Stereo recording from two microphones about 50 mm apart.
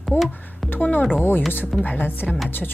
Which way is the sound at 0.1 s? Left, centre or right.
Left.